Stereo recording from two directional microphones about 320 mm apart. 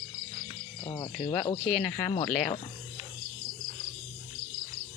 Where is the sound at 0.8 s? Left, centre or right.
Centre.